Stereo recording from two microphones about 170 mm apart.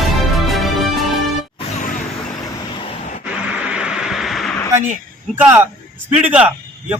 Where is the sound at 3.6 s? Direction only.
5° right (ahead or behind).